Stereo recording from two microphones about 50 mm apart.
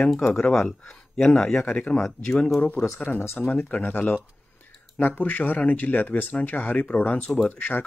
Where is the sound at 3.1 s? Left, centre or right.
Left.